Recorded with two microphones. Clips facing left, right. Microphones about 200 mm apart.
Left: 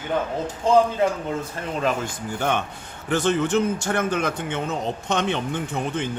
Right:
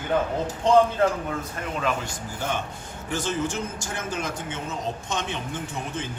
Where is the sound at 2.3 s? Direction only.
65° left (ahead or behind).